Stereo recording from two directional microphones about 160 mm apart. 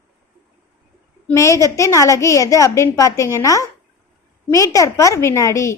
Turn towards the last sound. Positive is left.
turn(degrees=20)  # may be behind; listen again after turning